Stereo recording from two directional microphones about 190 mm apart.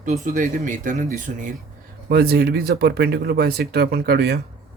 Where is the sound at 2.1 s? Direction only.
55° right (ahead or behind).